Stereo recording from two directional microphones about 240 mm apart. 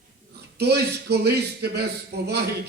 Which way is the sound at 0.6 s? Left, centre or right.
Right.